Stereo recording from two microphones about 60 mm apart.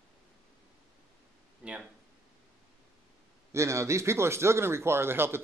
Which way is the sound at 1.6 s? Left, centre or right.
Centre.